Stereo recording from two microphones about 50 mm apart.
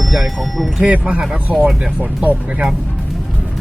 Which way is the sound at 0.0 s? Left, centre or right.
Centre.